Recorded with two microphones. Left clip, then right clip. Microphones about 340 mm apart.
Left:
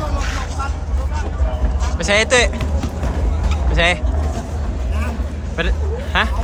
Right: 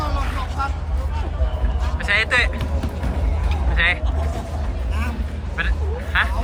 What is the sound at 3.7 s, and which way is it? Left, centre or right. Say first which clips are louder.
Vehicle: left 3 dB; centre.